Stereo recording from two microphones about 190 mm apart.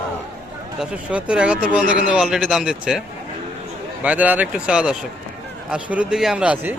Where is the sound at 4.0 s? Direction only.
5° right (ahead or behind).